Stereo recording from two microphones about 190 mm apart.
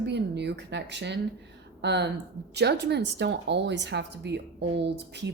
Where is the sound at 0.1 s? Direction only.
65° right (ahead or behind).